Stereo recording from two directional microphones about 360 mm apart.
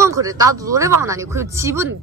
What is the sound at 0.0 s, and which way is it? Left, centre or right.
Speech, centre.